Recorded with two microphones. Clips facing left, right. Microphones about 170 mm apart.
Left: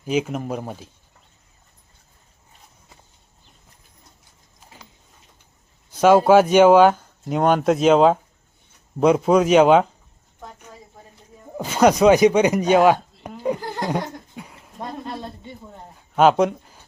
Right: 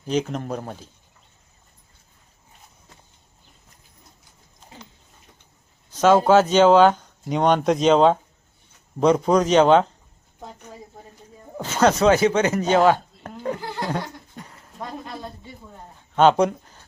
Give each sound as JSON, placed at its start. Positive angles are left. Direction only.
{"t": 0.0, "sound": "speech", "side_deg": 5}
{"t": 5.9, "sound": "speech", "side_deg": 10}
{"t": 11.5, "sound": "speech", "side_deg": 10}
{"t": 14.3, "sound": "a sound", "side_deg": 10}
{"t": 14.8, "sound": "a sound", "side_deg": 30}
{"t": 16.1, "sound": "speech", "side_deg": 5}